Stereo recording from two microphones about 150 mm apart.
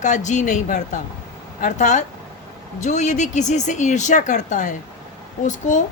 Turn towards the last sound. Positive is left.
turn(degrees=55)  # may be behind; listen again after turning